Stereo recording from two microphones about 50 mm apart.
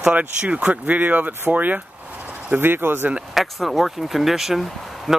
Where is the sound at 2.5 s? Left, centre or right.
Right.